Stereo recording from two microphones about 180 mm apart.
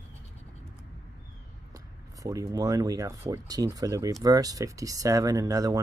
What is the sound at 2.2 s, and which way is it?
Speech, 20° right (ahead or behind).